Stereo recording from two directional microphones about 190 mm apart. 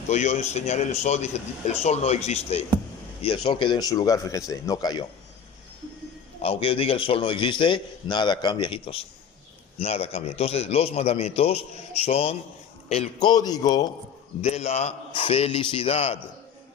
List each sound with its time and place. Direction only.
0.1 s a man's voice: 40° left (ahead or behind); by 5.0 s 20° left (ahead or behind)
6.4 s a man's voice: 30° left (ahead or behind)
13.2 s a man's voice: 20° left (ahead or behind)
14.4 s a man's voice: 35° left (ahead or behind)